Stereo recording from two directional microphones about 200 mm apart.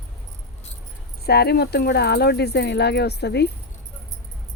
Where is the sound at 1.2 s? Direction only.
55° left (ahead or behind).